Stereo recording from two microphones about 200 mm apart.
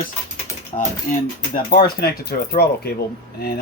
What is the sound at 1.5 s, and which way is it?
Speech, 45° left (ahead or behind).